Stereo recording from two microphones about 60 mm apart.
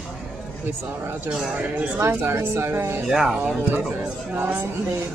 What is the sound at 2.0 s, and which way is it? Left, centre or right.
Speech, right.